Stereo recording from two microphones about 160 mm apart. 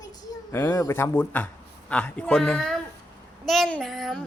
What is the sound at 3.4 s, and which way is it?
Child singing, centre (ahead or behind).